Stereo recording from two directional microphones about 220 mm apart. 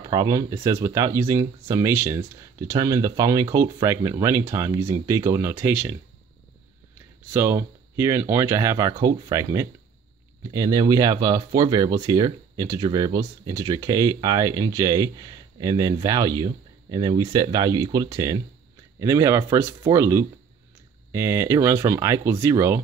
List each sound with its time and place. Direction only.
0.0 s speech: 15° right (ahead or behind)
7.3 s speech: 10° right (ahead or behind)